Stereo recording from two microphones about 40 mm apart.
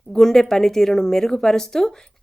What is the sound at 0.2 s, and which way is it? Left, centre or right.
A woman's voice, centre.